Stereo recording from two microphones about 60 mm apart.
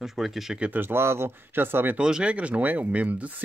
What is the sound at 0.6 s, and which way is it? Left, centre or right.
Speech, right.